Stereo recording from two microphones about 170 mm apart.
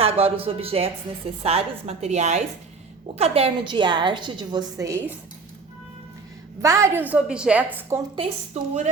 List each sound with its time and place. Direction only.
0.0 s a woman's voice: 35° right (ahead or behind); by 5.1 s 15° right (ahead or behind)
6.6 s a woman's voice: 20° right (ahead or behind)
8.6 s a woman's voice: 40° right (ahead or behind)